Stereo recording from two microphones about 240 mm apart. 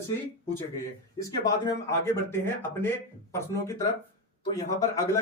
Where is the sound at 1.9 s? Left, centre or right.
Centre.